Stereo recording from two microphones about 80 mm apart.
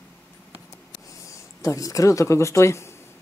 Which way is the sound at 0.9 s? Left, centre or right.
Left.